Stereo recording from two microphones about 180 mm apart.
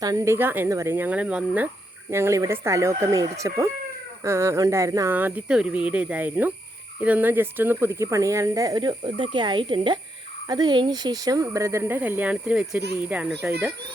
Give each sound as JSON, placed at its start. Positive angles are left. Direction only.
{"t": 0.0, "sound": "speech", "side_deg": -20}